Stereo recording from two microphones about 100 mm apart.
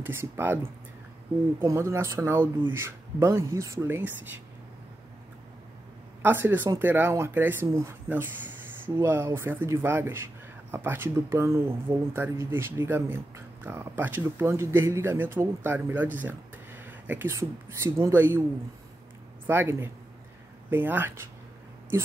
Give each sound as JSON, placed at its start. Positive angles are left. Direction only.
{"t": 0.0, "sound": "speech", "side_deg": -25}
{"t": 6.2, "sound": "speech", "side_deg": -20}
{"t": 9.0, "sound": "speech", "side_deg": -20}
{"t": 19.4, "sound": "speech", "side_deg": -25}